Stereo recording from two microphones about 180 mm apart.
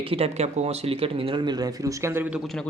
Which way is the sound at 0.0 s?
30° right (ahead or behind).